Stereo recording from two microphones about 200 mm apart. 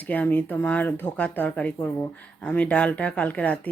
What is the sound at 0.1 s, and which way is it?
Speech, 10° left (ahead or behind).